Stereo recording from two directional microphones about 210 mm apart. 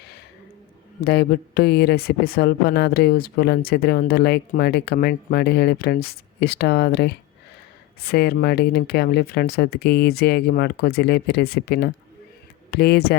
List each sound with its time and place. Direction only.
1.0 s speech: 50° left (ahead or behind)